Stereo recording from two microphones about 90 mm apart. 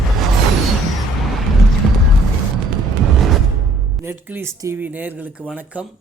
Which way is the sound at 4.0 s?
25° right (ahead or behind).